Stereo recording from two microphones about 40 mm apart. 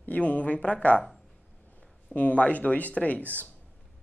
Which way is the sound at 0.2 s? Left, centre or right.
Left.